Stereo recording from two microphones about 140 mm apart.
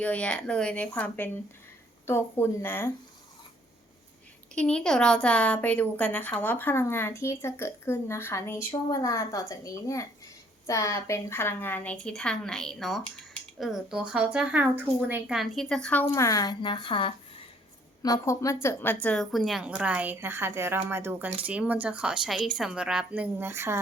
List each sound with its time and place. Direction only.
0.0 s a woman's voice: 10° left (ahead or behind)
4.5 s a woman's voice: 5° left (ahead or behind)
16.1 s speech: 25° left (ahead or behind)
18.0 s a woman's voice: 25° left (ahead or behind)
19.0 s speech: 5° left (ahead or behind); by 23.8 s 20° right (ahead or behind)